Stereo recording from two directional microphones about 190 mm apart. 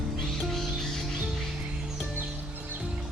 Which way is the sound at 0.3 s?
Centre (ahead or behind).